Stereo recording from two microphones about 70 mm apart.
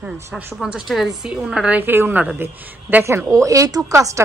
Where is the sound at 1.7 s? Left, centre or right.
Right.